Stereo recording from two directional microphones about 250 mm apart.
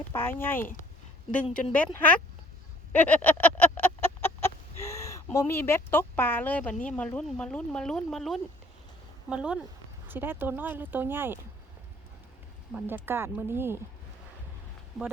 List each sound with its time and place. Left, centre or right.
1.5 s a woman's voice: left
1.7 s speech: centre
2.9 s chicken: centre
6.8 s speech: centre
12.7 s speech: centre
15.0 s speech: centre